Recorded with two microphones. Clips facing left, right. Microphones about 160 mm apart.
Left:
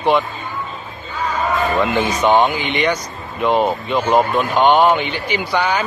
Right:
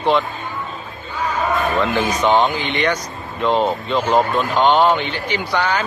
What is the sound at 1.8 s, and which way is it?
Speech, 15° left (ahead or behind).